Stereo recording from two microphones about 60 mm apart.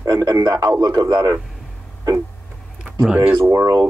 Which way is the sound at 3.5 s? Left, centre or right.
Right.